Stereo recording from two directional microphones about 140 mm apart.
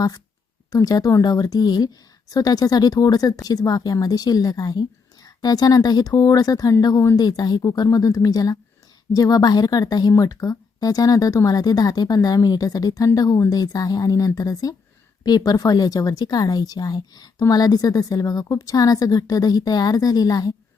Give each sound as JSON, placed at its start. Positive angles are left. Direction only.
{"t": 0.7, "sound": "speech", "side_deg": 25}